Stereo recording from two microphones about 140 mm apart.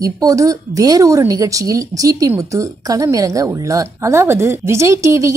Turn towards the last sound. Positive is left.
turn(degrees=-20)  # may be behind; listen again after turning